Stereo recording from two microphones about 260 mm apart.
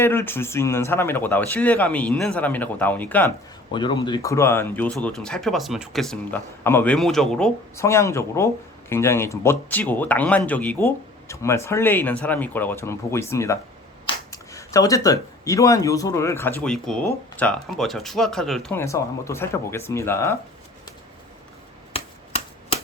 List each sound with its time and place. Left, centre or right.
0.0 s speech: centre
3.7 s speech: centre
21.9 s a sound: left